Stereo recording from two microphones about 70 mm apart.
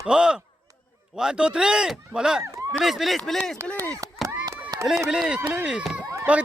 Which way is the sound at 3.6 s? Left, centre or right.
Right.